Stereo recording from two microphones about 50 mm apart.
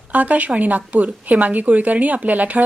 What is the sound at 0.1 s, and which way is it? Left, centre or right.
A woman's voice, right.